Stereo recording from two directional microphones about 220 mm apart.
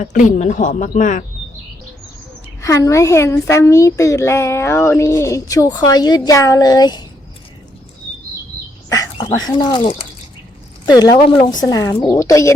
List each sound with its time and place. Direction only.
0.0 s speech: 35° left (ahead or behind)
2.6 s a child's voice: 15° left (ahead or behind)
8.9 s a child's voice: 20° left (ahead or behind)